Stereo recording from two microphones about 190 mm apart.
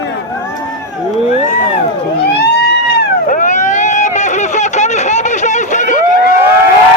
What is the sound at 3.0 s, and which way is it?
Vehicle, 45° left (ahead or behind).